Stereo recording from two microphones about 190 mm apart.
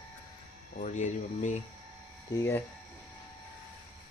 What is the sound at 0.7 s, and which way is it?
Speech, 40° left (ahead or behind).